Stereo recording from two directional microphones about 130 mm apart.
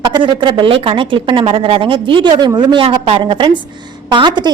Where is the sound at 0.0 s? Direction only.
35° right (ahead or behind).